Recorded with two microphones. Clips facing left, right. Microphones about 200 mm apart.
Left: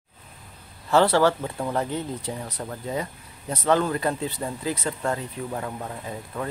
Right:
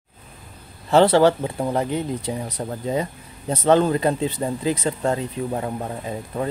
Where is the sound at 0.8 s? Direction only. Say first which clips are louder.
Right 4 dB; 20° right (ahead or behind).